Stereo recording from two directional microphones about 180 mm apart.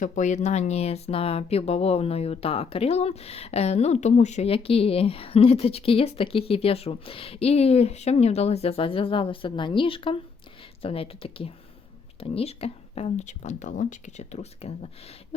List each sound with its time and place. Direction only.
0.0 s speech: 40° left (ahead or behind)